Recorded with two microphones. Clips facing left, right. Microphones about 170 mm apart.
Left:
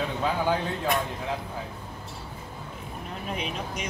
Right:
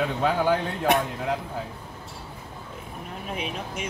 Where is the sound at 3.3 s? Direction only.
5° right (ahead or behind).